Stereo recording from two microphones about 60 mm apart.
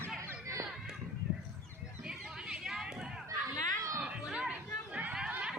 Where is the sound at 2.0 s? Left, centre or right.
Centre.